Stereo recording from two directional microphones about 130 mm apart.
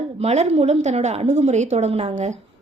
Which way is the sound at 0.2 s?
55° right (ahead or behind).